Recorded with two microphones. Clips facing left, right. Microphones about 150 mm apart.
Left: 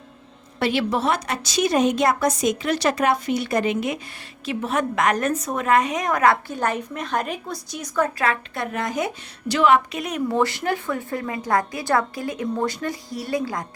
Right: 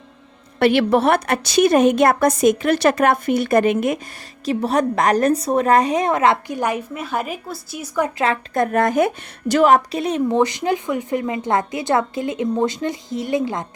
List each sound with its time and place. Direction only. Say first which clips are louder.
0.6 s a woman's voice: right 7 dB; 60° right (ahead or behind); by 8.1 s 10° right (ahead or behind)
8.5 s a woman's voice: right 9 dB; 50° right (ahead or behind); by 13.7 s 25° right (ahead or behind)